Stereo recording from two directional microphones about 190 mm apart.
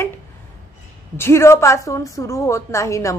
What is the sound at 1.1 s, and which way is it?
A woman's voice, 15° left (ahead or behind).